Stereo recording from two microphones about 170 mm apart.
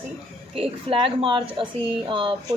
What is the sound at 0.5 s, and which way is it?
A woman's voice, 35° right (ahead or behind).